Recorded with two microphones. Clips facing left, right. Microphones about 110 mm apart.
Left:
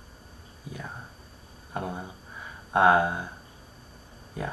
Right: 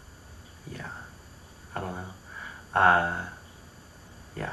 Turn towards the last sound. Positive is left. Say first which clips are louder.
# left 1 dB
turn(degrees=10)  # may be behind; listen again after turning